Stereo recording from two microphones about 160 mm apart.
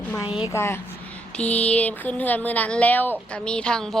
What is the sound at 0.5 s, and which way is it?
Speech, 15° left (ahead or behind).